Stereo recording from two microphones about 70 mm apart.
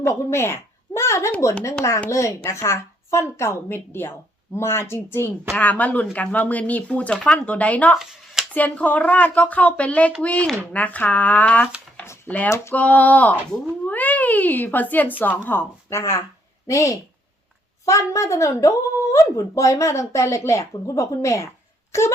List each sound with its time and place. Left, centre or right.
0.0 s speech: left
5.5 s speech: left
12.5 s speech: left
12.7 s speech: left
15.9 s speech: left